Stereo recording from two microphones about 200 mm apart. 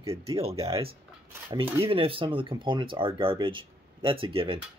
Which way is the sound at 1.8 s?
25° right (ahead or behind).